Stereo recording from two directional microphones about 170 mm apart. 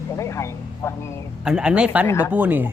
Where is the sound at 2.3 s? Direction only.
10° right (ahead or behind).